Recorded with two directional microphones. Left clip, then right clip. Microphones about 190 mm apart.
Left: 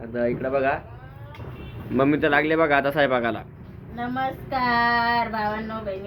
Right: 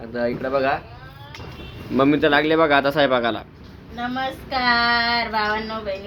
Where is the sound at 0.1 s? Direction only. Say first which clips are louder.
Right 1 dB; 10° right (ahead or behind).